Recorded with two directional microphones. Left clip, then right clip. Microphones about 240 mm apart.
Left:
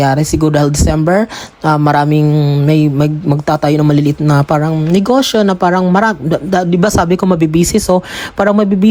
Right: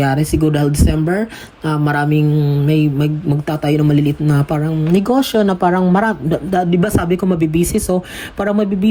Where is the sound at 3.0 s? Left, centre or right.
Centre.